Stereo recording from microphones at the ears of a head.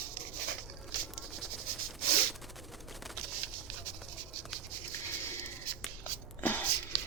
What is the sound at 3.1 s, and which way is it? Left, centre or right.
Patter, right.